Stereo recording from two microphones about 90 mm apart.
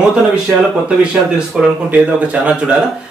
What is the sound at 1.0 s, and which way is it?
Speech, 10° right (ahead or behind).